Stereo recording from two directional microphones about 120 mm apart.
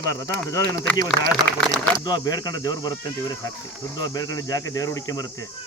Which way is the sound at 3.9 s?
30° left (ahead or behind).